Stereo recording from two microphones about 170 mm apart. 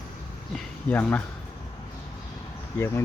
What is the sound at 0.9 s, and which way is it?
Speech, 10° left (ahead or behind).